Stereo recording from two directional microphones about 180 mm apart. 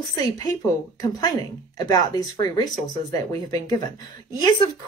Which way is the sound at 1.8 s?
20° left (ahead or behind).